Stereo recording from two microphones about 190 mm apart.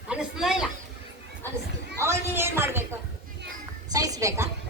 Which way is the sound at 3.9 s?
20° right (ahead or behind).